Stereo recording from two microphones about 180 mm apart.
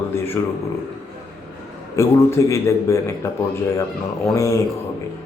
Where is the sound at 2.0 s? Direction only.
15° left (ahead or behind).